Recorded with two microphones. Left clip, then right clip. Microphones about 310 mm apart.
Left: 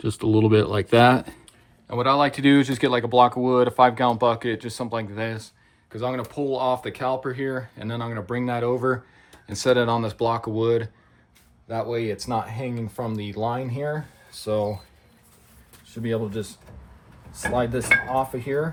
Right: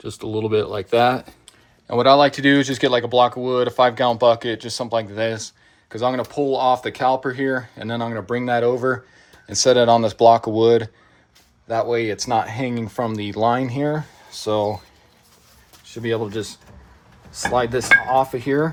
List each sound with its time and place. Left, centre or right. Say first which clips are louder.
0.0 s speech: left 4 dB; left
1.9 s speech: right 7 dB; centre
15.9 s speech: right 4 dB; right